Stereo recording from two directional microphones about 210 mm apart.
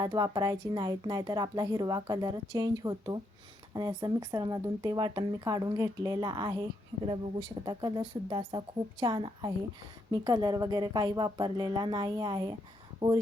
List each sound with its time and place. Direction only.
0.0 s speech: 20° right (ahead or behind)